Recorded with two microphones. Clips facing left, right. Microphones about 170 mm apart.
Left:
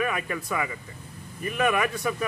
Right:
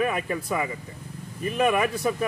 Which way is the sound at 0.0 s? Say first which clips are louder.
Right 3 dB; 30° right (ahead or behind).